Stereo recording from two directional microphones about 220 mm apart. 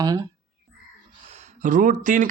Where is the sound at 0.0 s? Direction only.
15° right (ahead or behind).